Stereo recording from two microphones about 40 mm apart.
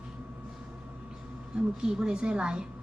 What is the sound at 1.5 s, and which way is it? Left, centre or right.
A woman's voice, right.